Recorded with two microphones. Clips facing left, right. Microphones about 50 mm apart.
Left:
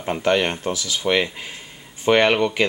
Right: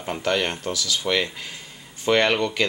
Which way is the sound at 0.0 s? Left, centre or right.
Centre.